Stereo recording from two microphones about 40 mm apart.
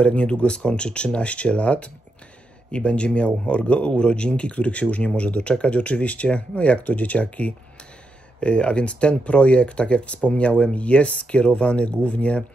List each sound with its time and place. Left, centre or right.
0.0 s speech: left